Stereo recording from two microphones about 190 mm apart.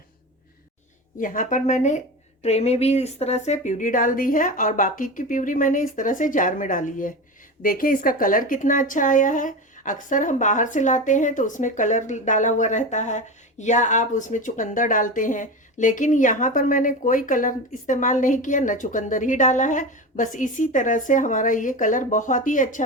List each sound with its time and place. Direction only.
1.2 s speech: 45° left (ahead or behind)